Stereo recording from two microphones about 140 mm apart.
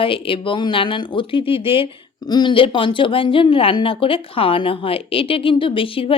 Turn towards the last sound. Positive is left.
turn(degrees=40)  # may be behind; listen again after turning